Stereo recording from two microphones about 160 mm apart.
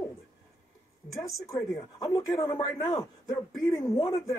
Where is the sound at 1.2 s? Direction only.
20° left (ahead or behind).